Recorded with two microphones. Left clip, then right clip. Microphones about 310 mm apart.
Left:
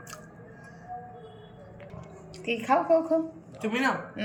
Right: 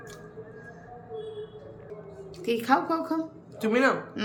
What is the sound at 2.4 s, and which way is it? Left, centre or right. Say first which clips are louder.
Speech: right 1 dB; right.